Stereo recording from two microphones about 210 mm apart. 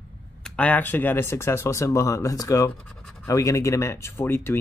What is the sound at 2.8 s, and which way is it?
Scratch, 5° left (ahead or behind).